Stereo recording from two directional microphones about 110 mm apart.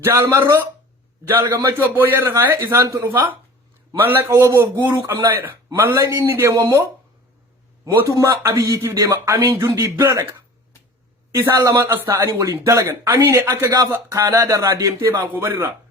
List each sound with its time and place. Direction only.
0.0 s a man's voice: 25° right (ahead or behind)
8.1 s a man's voice: 30° right (ahead or behind)
11.5 s a man's voice: 30° right (ahead or behind)